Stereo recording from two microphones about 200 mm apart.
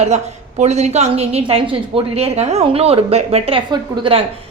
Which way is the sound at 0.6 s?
35° right (ahead or behind).